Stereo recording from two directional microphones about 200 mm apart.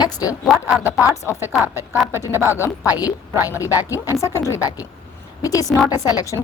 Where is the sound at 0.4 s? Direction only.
Centre (ahead or behind).